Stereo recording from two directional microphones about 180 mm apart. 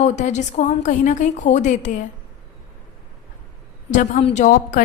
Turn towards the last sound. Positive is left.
turn(degrees=50)  # may be behind; listen again after turning